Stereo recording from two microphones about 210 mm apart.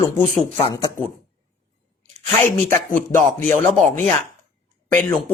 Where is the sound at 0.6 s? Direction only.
20° left (ahead or behind).